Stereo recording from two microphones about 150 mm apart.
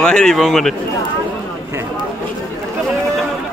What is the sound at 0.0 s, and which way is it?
Speech, 5° left (ahead or behind).